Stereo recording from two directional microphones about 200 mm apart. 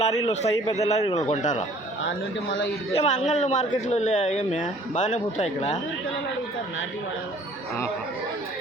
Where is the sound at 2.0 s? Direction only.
70° left (ahead or behind).